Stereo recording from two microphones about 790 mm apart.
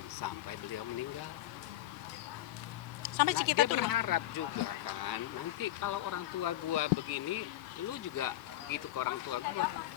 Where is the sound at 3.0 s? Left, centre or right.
Left.